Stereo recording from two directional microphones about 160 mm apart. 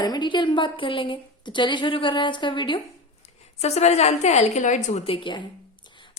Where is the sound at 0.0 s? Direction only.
25° left (ahead or behind).